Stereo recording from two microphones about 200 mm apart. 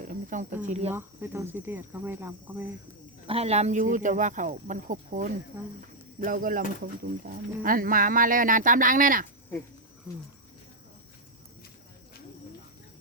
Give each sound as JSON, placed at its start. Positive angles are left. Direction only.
{"t": 0.1, "sound": "speech", "side_deg": -40}
{"t": 0.9, "sound": "speech", "side_deg": -10}
{"t": 3.2, "sound": "speech", "side_deg": -30}